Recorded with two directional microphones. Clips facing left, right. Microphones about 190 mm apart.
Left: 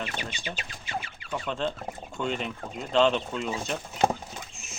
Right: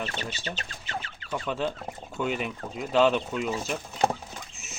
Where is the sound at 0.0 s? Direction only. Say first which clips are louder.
Right 1 dB; 10° left (ahead or behind).